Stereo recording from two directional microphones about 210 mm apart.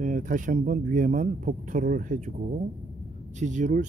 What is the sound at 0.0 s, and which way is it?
Speech, 40° right (ahead or behind).